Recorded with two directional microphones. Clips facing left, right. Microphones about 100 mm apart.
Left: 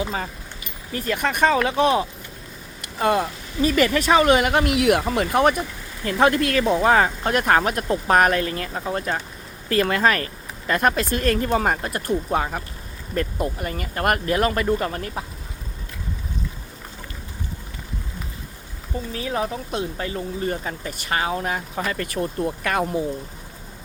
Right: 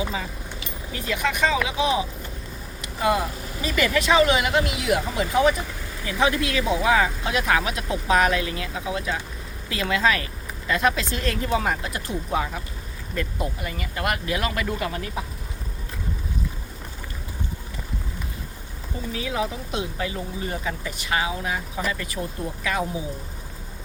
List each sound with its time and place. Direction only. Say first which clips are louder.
0.9 s speech: left 3 dB; 50° left (ahead or behind)
3.6 s speech: left 4 dB; 45° left (ahead or behind)
19.1 s speech: left 1 dB; 40° left (ahead or behind)